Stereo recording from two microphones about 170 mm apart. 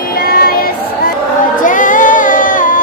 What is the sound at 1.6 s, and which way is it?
Music, 50° left (ahead or behind).